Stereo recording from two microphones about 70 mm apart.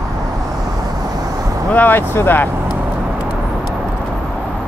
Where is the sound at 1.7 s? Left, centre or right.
Left.